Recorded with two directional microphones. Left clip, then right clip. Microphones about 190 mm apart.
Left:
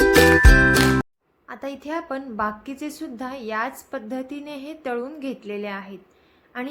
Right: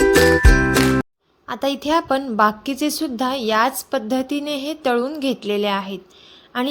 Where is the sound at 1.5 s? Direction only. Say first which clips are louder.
Right 11 dB; 40° right (ahead or behind).